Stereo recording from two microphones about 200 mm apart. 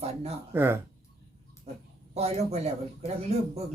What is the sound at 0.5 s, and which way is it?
Speech, 10° right (ahead or behind).